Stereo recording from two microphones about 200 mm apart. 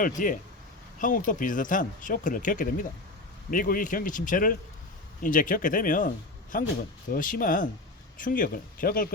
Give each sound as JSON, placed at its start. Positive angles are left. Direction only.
{"t": 0.2, "sound": "speech", "side_deg": 45}